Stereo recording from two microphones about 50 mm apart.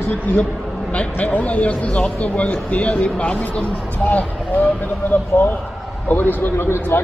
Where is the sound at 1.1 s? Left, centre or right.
Left.